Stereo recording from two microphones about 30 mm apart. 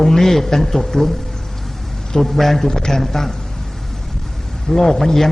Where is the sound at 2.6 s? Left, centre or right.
Centre.